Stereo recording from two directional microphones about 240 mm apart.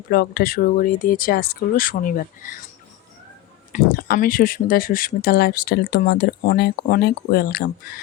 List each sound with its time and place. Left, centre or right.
0.1 s speech: left
3.7 s speech: left